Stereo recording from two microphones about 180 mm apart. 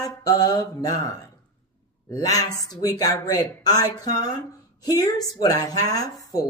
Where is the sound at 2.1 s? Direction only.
20° left (ahead or behind).